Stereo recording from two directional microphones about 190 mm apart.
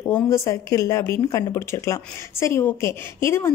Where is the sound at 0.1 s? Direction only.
15° left (ahead or behind).